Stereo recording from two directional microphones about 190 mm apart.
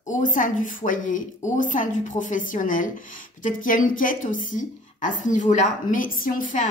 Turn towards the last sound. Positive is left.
turn(degrees=45)  # may be behind; listen again after turning